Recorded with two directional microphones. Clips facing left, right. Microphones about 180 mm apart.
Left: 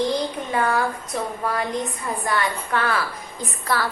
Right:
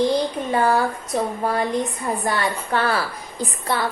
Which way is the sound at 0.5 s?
30° right (ahead or behind).